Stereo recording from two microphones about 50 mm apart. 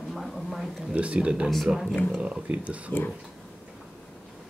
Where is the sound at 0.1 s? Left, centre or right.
Centre.